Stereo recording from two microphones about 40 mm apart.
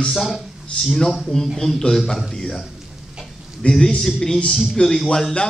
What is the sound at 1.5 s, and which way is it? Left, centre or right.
A man's voice, centre.